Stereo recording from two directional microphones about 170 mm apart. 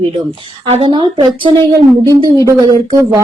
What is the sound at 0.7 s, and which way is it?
Speech, 30° right (ahead or behind).